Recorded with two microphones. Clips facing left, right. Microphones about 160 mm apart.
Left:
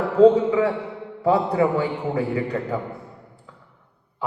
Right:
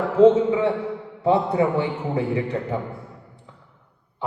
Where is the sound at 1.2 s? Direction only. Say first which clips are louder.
Even; 25° right (ahead or behind).